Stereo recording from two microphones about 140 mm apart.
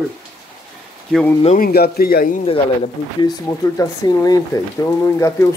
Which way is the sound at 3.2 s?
25° left (ahead or behind).